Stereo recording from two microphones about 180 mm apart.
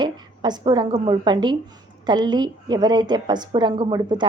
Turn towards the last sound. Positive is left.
turn(degrees=-25)  # may be behind; listen again after turning